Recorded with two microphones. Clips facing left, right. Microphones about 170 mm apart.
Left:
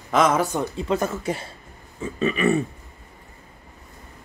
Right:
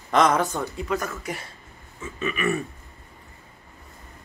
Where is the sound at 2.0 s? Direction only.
30° left (ahead or behind).